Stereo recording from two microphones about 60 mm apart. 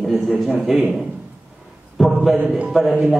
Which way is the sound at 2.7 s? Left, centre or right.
Centre.